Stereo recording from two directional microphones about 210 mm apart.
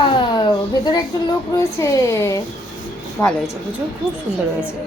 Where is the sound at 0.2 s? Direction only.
20° left (ahead or behind).